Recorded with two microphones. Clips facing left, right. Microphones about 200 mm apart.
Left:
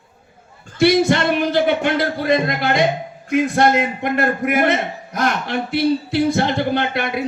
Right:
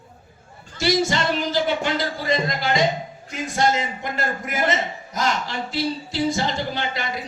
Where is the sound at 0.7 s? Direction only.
60° left (ahead or behind).